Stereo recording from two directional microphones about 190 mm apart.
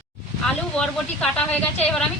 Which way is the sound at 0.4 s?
5° left (ahead or behind).